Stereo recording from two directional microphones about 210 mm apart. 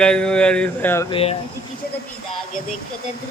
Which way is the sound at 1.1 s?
30° left (ahead or behind).